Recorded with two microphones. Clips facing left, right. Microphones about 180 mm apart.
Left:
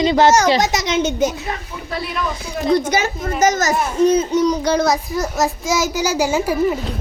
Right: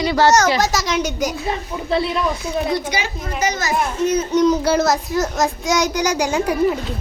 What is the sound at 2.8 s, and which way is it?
Speech, 45° left (ahead or behind).